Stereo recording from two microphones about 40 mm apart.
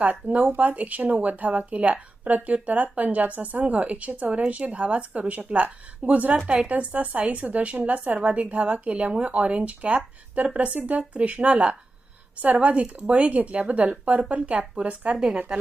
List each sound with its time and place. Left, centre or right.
0.0 s speech: right